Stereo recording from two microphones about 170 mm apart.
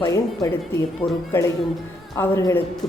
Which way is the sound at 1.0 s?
10° left (ahead or behind).